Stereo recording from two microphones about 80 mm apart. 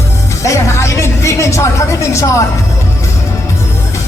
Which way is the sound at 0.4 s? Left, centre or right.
Left.